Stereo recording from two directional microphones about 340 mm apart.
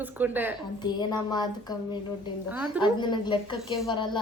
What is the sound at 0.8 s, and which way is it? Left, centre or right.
Speech, centre.